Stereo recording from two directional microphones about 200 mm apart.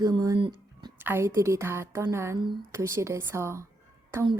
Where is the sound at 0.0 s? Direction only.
20° right (ahead or behind).